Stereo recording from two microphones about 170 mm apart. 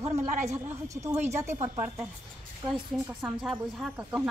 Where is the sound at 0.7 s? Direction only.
20° right (ahead or behind).